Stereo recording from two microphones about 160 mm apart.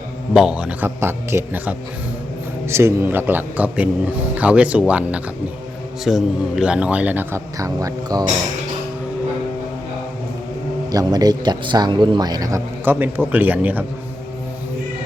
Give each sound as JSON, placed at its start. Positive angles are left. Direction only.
{"t": 0.3, "sound": "speech", "side_deg": -5}
{"t": 10.9, "sound": "a man's voice", "side_deg": -25}